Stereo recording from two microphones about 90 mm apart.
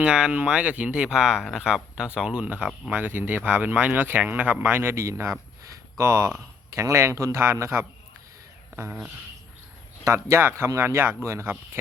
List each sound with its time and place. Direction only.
0.0 s speech: 10° right (ahead or behind); by 7.9 s 30° right (ahead or behind)
8.9 s speech: 15° right (ahead or behind)
10.0 s speech: 35° right (ahead or behind)